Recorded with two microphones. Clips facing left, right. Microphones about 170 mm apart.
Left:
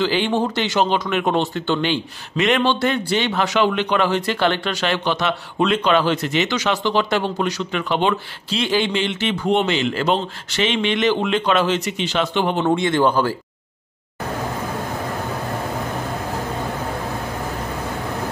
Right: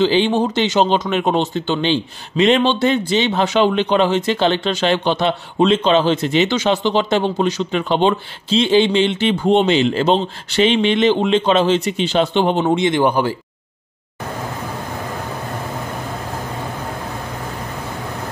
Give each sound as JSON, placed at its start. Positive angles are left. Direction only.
{"t": 0.0, "sound": "speech", "side_deg": -20}